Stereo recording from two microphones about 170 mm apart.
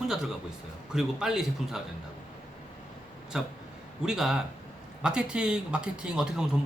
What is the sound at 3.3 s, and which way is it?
A man's voice, 5° right (ahead or behind).